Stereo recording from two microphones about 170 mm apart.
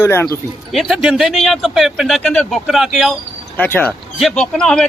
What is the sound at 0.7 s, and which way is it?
Speech, centre (ahead or behind).